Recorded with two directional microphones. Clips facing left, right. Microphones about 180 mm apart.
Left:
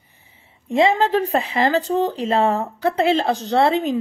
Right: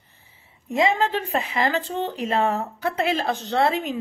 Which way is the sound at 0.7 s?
30° left (ahead or behind).